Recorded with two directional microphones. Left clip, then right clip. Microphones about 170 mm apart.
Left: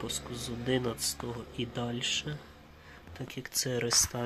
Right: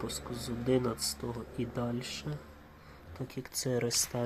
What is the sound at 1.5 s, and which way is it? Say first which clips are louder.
Speech: left 1 dB; 15° left (ahead or behind).